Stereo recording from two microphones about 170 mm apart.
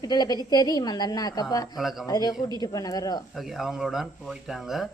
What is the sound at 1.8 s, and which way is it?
Speech, centre (ahead or behind).